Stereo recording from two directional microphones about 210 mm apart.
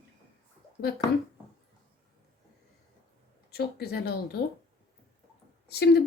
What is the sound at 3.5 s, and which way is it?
Speech, 50° left (ahead or behind).